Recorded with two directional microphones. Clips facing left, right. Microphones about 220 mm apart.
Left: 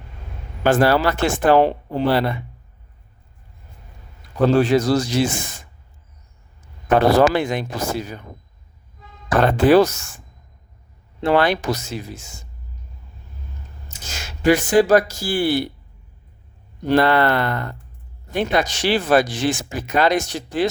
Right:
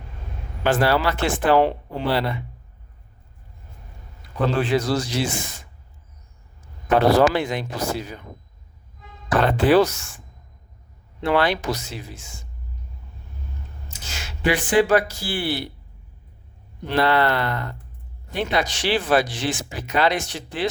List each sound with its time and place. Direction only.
0.6 s speech: 45° left (ahead or behind)
4.4 s speech: 40° left (ahead or behind)
6.9 s speech: 50° left (ahead or behind)
9.4 s speech: 45° left (ahead or behind)
11.2 s speech: 45° left (ahead or behind)
13.8 s speech: 45° left (ahead or behind)
16.8 s speech: 45° left (ahead or behind)